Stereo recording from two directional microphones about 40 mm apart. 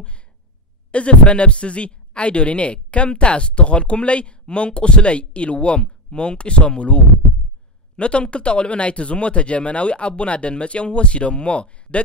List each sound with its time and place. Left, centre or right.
0.9 s speech: left